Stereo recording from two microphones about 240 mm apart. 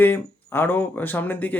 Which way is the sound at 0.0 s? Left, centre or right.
Centre.